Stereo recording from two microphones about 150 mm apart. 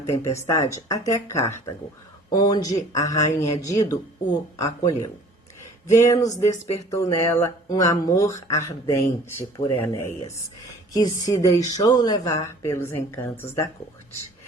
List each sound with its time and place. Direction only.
0.1 s speech: 20° left (ahead or behind)
6.5 s speech: 45° left (ahead or behind)
6.9 s speech: 20° left (ahead or behind)
11.3 s speech: 25° left (ahead or behind)